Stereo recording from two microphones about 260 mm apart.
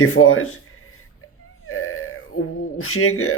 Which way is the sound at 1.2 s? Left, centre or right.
Left.